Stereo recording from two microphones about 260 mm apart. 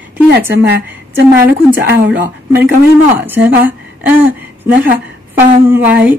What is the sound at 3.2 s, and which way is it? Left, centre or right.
A woman's voice, centre.